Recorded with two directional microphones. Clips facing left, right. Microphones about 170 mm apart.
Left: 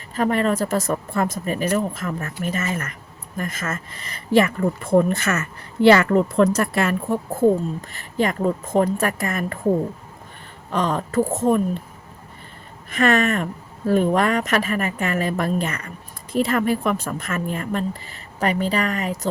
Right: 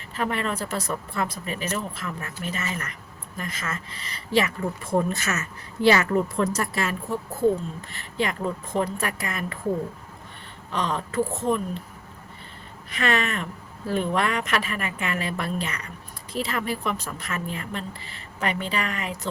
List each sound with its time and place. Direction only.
0.1 s speech: 40° left (ahead or behind)
10.7 s speech: 45° left (ahead or behind)
12.9 s speech: 45° left (ahead or behind)